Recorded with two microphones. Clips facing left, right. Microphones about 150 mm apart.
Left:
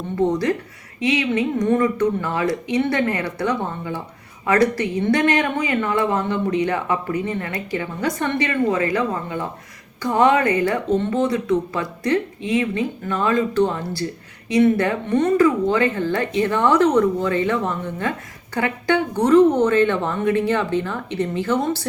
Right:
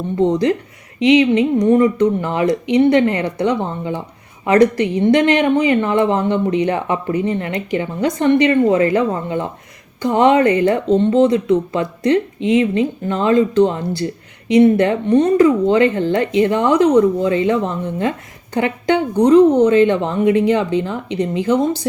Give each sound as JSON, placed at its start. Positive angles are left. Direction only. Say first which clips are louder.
{"t": 0.2, "sound": "a woman's voice", "louder": "right 4 dB", "side_deg": -20}